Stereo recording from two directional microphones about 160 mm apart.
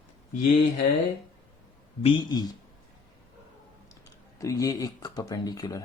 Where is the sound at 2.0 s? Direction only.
25° left (ahead or behind).